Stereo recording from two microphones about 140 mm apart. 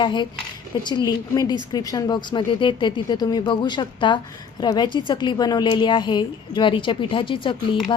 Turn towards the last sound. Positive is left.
turn(degrees=35)  # may be behind; listen again after turning